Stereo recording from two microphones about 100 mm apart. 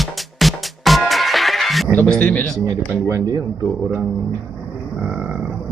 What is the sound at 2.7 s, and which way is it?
Speech, 30° right (ahead or behind).